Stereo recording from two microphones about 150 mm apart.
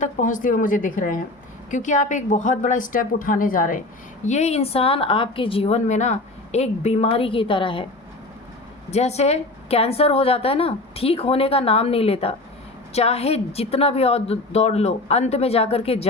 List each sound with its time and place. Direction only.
0.0 s a woman's voice: 60° left (ahead or behind)
4.3 s a woman's voice: 45° left (ahead or behind)
8.9 s a woman's voice: 45° left (ahead or behind)